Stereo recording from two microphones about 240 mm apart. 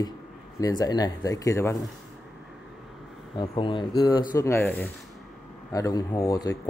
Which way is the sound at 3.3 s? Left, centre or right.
Left.